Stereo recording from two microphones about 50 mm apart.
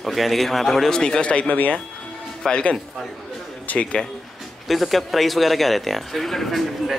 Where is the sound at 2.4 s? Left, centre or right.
Centre.